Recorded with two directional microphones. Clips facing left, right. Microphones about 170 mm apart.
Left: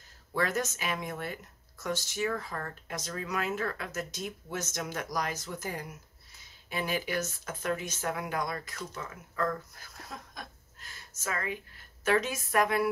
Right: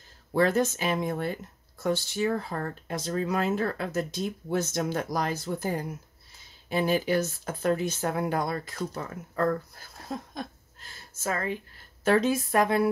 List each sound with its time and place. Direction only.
0.3 s speech: 30° right (ahead or behind)